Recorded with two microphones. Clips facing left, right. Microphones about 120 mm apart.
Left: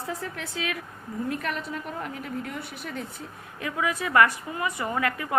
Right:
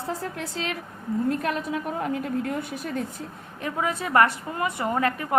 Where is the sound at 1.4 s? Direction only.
55° right (ahead or behind).